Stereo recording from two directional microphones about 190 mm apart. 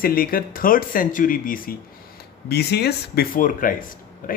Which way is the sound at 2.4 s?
60° left (ahead or behind).